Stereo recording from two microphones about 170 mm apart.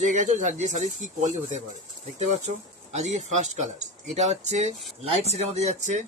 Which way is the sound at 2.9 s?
45° right (ahead or behind).